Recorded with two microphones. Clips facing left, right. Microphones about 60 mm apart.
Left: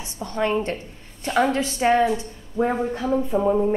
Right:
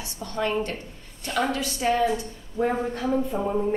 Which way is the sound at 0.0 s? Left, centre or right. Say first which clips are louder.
Left 3 dB; left.